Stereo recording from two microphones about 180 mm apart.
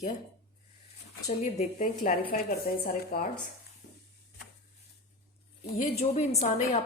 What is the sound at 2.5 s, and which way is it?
Speech, 55° left (ahead or behind).